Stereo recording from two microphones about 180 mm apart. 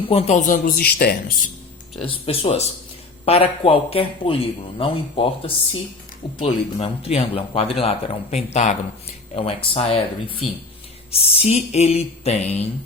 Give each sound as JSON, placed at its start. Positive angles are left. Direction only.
{"t": 0.0, "sound": "a man's voice", "side_deg": 35}
{"t": 2.0, "sound": "a man's voice", "side_deg": 35}
{"t": 11.1, "sound": "a man's voice", "side_deg": 35}